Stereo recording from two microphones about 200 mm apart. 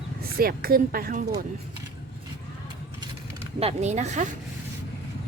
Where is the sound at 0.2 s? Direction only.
50° right (ahead or behind).